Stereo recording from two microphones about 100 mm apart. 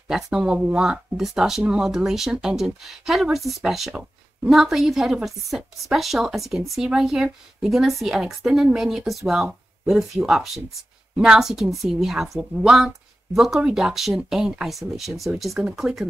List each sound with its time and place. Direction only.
0.1 s speech: 5° right (ahead or behind)